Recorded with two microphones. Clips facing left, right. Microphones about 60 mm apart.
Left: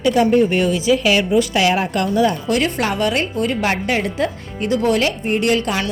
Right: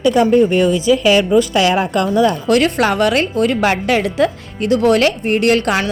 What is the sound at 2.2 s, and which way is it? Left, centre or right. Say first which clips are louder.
A woman's voice: right 4 dB; right.